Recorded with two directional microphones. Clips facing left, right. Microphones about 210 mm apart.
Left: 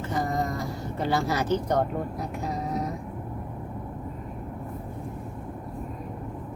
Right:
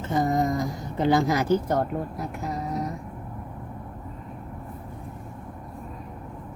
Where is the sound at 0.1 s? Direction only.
20° right (ahead or behind); by 2.2 s 5° right (ahead or behind).